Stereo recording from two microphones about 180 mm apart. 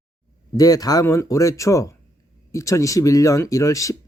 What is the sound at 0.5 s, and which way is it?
Speech, 20° left (ahead or behind).